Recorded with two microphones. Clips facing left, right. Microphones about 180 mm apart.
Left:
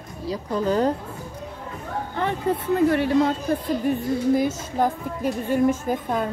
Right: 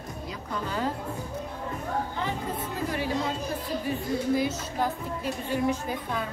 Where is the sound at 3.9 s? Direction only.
50° left (ahead or behind).